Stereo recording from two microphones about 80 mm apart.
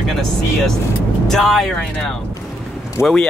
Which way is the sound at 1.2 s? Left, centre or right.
Centre.